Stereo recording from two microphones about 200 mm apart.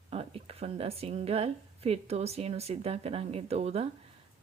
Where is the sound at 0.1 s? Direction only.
30° right (ahead or behind).